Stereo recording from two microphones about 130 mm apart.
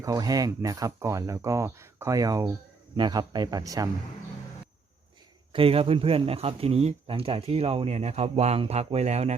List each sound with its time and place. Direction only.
0.0 s speech: 30° right (ahead or behind)
5.5 s speech: 45° right (ahead or behind)